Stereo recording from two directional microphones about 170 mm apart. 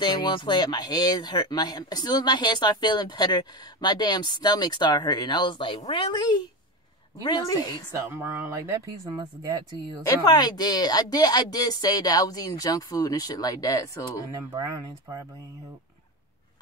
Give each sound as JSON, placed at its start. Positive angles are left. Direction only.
{"t": 0.0, "sound": "speech", "side_deg": 25}
{"t": 8.1, "sound": "speech", "side_deg": -15}
{"t": 10.0, "sound": "speech", "side_deg": 25}